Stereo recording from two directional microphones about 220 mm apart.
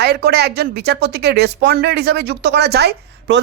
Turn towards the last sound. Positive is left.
turn(degrees=-50)  # may be behind; listen again after turning